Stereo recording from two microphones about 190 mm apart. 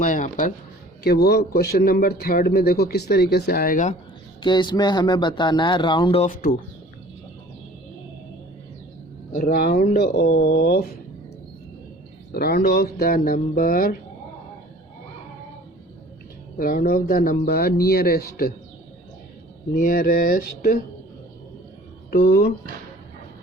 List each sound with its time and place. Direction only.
0.0 s speech: 45° left (ahead or behind)
1.0 s a man's voice: 55° left (ahead or behind)
4.4 s speech: 25° left (ahead or behind)
9.3 s speech: 50° left (ahead or behind)
12.3 s speech: 55° left (ahead or behind)
16.6 s speech: 50° left (ahead or behind)
19.7 s speech: 45° left (ahead or behind)
22.1 s a man's voice: 55° left (ahead or behind)